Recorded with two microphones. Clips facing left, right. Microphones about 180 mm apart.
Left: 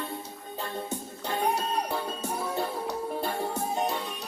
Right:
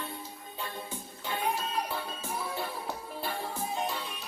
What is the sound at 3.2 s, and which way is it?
Music, 45° left (ahead or behind).